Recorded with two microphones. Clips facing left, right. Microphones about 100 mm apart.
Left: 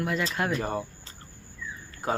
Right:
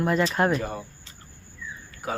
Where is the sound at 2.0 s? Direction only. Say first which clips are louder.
Left 2 dB; 30° left (ahead or behind).